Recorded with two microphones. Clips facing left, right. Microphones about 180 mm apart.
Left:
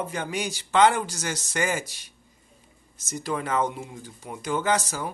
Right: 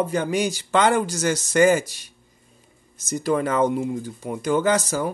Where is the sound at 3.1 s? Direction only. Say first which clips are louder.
Right 6 dB; 45° right (ahead or behind).